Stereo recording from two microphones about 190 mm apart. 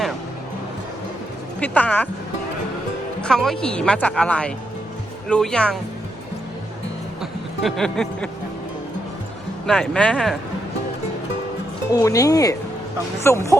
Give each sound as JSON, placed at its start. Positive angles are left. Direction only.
{"t": 1.5, "sound": "speech", "side_deg": 10}
{"t": 3.2, "sound": "speech", "side_deg": 5}
{"t": 7.2, "sound": "a sound", "side_deg": 0}
{"t": 9.6, "sound": "speech", "side_deg": 5}
{"t": 11.9, "sound": "speech", "side_deg": 20}